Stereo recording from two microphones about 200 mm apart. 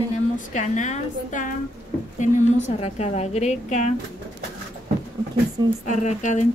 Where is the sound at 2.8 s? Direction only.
35° left (ahead or behind).